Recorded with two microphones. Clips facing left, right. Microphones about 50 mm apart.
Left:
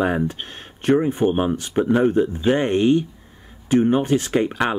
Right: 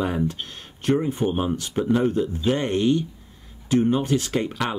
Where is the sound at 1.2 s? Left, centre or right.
Centre.